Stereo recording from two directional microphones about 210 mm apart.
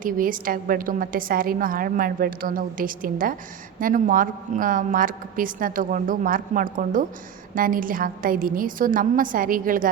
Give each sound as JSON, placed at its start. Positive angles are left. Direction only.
{"t": 0.0, "sound": "a woman's voice", "side_deg": -40}